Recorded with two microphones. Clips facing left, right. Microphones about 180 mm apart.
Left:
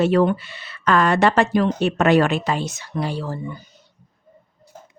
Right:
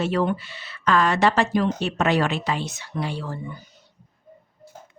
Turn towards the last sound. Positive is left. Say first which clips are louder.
# left 3 dB
turn(degrees=40)  # may be behind; listen again after turning